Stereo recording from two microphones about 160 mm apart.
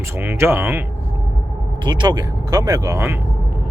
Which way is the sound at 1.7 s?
30° right (ahead or behind).